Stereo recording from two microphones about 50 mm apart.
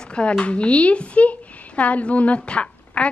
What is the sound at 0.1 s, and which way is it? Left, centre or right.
A woman's voice, left.